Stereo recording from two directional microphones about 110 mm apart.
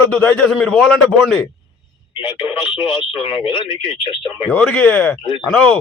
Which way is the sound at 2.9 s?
50° left (ahead or behind).